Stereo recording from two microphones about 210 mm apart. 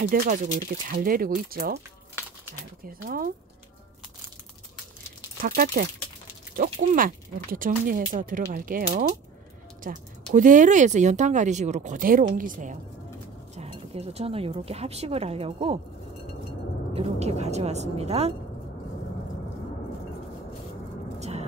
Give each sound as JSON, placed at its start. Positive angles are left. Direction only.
{"t": 0.0, "sound": "speech", "side_deg": -45}
{"t": 2.8, "sound": "speech", "side_deg": -45}
{"t": 5.4, "sound": "speech", "side_deg": -45}
{"t": 16.9, "sound": "speech", "side_deg": -30}
{"t": 21.2, "sound": "vehicle", "side_deg": -30}